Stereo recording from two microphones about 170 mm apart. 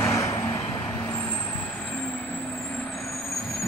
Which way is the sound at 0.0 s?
15° left (ahead or behind).